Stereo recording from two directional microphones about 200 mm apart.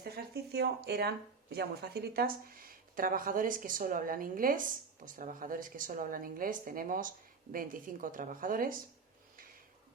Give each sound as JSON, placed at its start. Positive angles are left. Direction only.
{"t": 0.0, "sound": "speech", "side_deg": -50}